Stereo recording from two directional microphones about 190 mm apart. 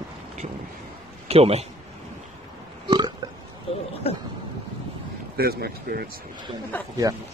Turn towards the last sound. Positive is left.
turn(degrees=10)  # may be behind; listen again after turning